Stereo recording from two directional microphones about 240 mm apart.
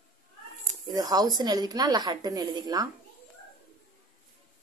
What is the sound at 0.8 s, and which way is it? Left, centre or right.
Speech, centre.